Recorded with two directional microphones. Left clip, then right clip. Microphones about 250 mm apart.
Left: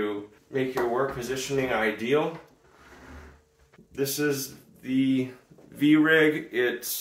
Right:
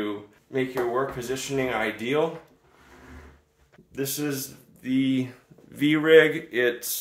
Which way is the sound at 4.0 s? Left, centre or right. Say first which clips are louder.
Left 3 dB; right.